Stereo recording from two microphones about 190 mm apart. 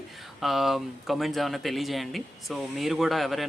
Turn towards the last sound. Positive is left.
turn(degrees=0)  # may be behind; listen again after turning